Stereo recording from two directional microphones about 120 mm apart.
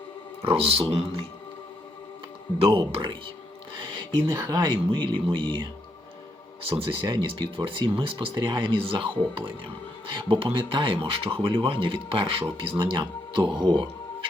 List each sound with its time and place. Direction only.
0.4 s speech: 55° right (ahead or behind)
2.6 s speech: 50° right (ahead or behind)
4.3 s speech: 35° right (ahead or behind)